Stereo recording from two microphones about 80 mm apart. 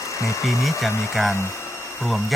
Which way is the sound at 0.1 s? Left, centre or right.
Left.